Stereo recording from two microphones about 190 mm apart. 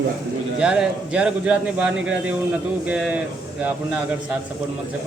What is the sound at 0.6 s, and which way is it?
A man's voice, 5° right (ahead or behind).